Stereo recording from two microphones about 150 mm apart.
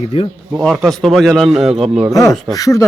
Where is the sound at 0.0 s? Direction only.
40° left (ahead or behind).